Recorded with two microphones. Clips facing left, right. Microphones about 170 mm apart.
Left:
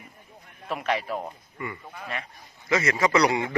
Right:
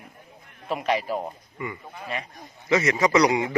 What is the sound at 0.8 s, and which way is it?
Speech, 30° right (ahead or behind).